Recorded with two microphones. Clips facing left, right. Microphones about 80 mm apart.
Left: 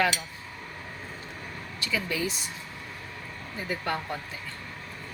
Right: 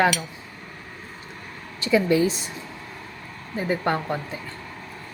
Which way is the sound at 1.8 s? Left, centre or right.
Right.